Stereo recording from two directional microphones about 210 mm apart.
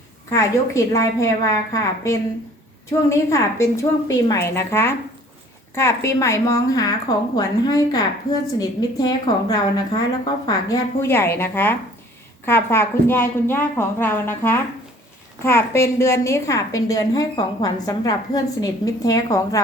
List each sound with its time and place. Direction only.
0.3 s a woman's voice: 15° left (ahead or behind)